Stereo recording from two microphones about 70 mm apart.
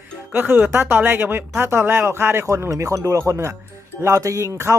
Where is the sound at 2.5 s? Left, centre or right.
Right.